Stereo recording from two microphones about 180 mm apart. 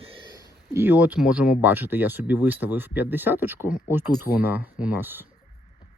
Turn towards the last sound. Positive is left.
turn(degrees=-10)  # may be behind; listen again after turning